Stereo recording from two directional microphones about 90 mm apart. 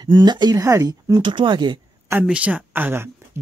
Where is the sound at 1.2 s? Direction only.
60° right (ahead or behind).